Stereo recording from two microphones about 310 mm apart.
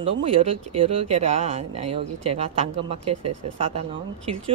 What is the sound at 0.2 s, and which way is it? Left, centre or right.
Speech, centre.